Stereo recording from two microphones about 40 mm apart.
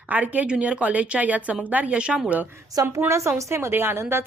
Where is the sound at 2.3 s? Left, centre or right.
Right.